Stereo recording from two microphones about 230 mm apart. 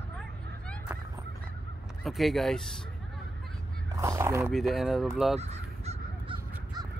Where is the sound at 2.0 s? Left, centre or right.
Centre.